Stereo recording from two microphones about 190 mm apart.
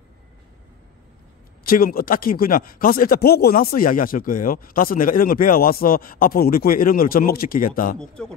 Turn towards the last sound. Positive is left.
turn(degrees=45)  # may be behind; listen again after turning